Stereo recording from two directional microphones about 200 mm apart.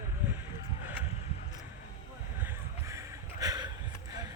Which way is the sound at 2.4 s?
15° right (ahead or behind).